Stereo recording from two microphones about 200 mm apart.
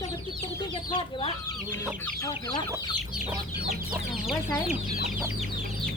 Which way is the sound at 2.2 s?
20° left (ahead or behind).